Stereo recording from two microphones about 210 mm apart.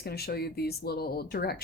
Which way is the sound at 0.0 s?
50° left (ahead or behind).